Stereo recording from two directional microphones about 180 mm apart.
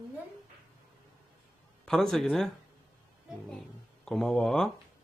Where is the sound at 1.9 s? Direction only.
Centre (ahead or behind).